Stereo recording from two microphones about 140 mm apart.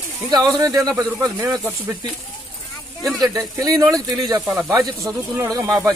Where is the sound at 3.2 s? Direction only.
25° right (ahead or behind).